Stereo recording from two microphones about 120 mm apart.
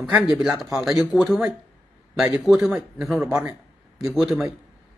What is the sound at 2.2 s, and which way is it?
Speech, 5° right (ahead or behind).